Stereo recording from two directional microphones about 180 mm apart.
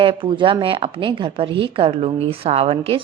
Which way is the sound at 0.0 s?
30° right (ahead or behind).